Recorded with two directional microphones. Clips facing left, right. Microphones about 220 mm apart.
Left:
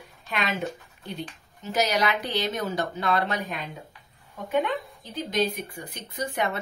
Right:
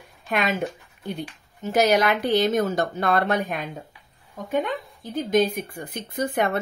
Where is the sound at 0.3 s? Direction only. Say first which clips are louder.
Right 5 dB; 50° right (ahead or behind).